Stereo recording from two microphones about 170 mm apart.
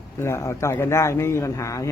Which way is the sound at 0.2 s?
15° left (ahead or behind).